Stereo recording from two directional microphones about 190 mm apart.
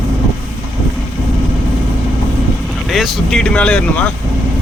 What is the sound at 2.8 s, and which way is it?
Speech, centre (ahead or behind).